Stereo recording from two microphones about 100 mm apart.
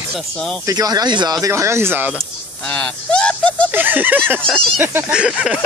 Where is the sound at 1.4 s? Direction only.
30° right (ahead or behind).